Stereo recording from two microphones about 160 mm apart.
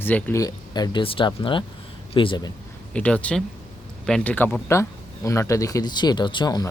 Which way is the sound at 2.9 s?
10° left (ahead or behind).